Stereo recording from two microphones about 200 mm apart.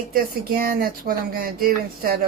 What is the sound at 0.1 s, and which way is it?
Speech, 45° right (ahead or behind).